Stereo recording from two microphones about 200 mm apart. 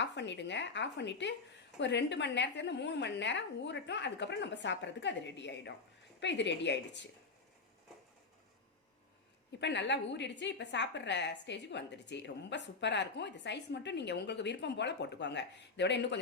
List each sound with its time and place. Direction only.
0.0 s a woman's voice: 60° left (ahead or behind)
9.6 s a woman's voice: 60° left (ahead or behind)